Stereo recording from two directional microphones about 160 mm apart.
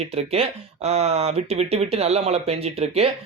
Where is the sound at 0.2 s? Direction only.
40° right (ahead or behind).